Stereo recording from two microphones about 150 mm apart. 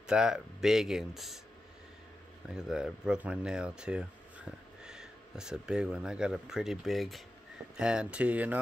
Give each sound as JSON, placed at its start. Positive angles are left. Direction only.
{"t": 0.0, "sound": "speech", "side_deg": -5}
{"t": 2.5, "sound": "speech", "side_deg": -5}